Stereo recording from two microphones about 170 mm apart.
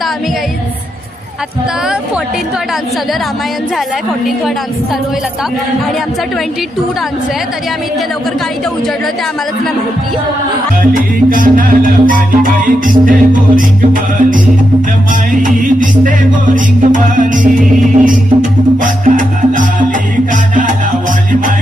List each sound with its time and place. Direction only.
10.9 s music: 50° right (ahead or behind)